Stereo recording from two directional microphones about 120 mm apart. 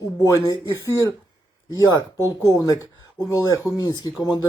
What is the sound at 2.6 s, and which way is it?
Speech, 30° left (ahead or behind).